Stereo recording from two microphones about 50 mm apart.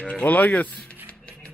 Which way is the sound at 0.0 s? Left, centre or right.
Left.